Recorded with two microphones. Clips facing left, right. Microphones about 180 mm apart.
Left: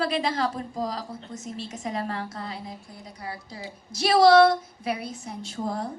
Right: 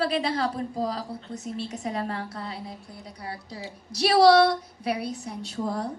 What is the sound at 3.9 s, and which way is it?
A woman's voice, 70° right (ahead or behind).